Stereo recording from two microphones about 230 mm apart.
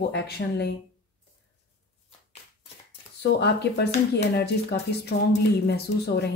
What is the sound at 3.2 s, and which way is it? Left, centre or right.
Speech, left.